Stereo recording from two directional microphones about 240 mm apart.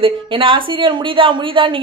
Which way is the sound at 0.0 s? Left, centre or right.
Right.